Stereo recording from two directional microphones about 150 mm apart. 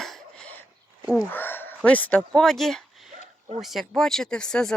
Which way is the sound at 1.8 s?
10° left (ahead or behind).